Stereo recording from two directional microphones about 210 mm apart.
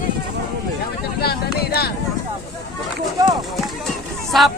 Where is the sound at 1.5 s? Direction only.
50° left (ahead or behind).